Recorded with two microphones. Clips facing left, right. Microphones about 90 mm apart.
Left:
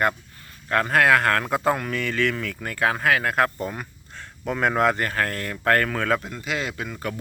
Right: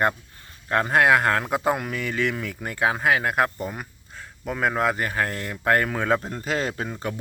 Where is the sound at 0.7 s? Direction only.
20° right (ahead or behind).